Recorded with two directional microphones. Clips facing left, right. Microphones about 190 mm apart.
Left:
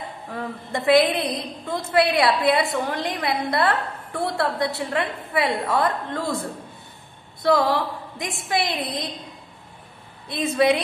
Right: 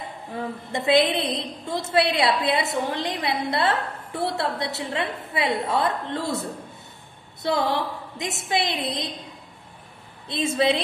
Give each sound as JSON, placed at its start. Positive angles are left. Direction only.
{"t": 0.3, "sound": "a woman's voice", "side_deg": -20}
{"t": 7.4, "sound": "a woman's voice", "side_deg": -25}
{"t": 10.2, "sound": "a woman's voice", "side_deg": -25}